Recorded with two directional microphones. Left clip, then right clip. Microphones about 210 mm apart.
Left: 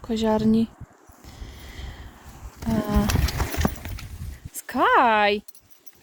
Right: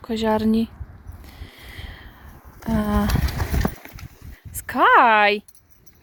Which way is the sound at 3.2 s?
Centre (ahead or behind).